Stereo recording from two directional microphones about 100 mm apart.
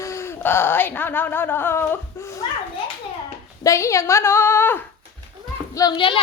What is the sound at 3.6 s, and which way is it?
A woman's voice, 30° left (ahead or behind).